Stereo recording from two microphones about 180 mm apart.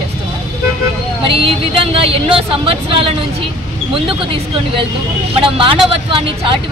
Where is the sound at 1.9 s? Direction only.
30° right (ahead or behind).